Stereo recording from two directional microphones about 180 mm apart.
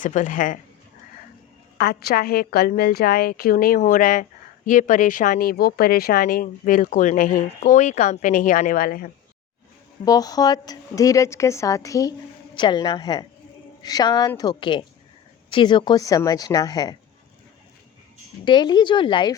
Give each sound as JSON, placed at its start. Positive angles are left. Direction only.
{"t": 0.0, "sound": "a woman's voice", "side_deg": 45}
{"t": 1.8, "sound": "a woman's voice", "side_deg": 60}
{"t": 10.1, "sound": "a woman's voice", "side_deg": 20}
{"t": 18.4, "sound": "a woman's voice", "side_deg": 25}